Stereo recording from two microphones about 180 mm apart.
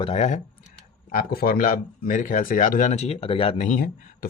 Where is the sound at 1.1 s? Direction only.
55° left (ahead or behind); by 3.5 s 30° left (ahead or behind).